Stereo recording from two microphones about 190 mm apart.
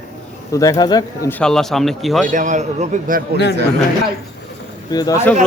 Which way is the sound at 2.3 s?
40° right (ahead or behind).